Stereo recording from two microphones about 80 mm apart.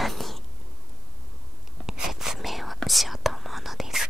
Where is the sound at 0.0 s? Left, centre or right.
Centre.